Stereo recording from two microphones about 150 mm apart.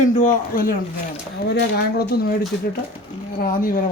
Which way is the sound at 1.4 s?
90° left.